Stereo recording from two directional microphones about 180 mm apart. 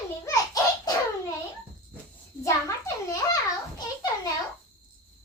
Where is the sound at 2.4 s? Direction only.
15° left (ahead or behind).